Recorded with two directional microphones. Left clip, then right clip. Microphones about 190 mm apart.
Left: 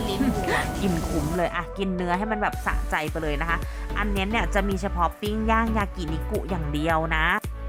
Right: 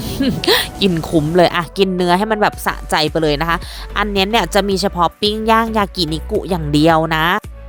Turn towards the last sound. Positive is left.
turn(degrees=-30)  # may be behind; listen again after turning